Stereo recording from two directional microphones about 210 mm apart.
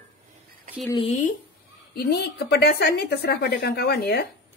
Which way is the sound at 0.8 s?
20° left (ahead or behind).